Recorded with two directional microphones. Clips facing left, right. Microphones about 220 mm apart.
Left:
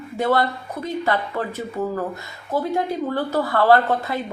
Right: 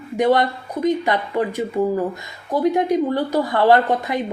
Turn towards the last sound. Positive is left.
turn(degrees=-15)  # may be behind; listen again after turning